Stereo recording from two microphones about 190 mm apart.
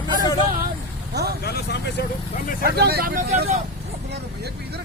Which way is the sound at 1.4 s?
60° left (ahead or behind).